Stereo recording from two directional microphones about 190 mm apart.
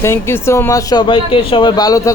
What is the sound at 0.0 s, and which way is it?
Speech, 15° left (ahead or behind).